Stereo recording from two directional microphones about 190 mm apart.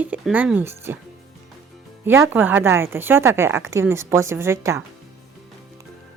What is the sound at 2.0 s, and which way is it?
A woman's voice, 15° right (ahead or behind).